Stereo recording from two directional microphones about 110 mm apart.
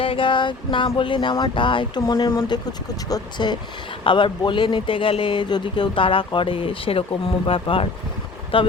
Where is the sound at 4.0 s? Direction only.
50° left (ahead or behind).